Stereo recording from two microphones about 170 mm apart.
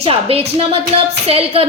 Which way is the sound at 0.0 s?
35° right (ahead or behind).